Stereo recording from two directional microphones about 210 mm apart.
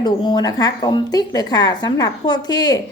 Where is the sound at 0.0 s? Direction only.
20° left (ahead or behind).